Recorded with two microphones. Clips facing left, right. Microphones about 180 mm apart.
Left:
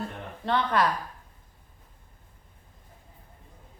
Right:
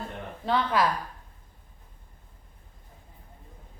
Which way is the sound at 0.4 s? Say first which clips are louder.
Even; 5° right (ahead or behind).